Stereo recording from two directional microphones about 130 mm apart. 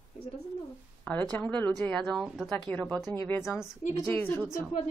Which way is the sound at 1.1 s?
10° left (ahead or behind).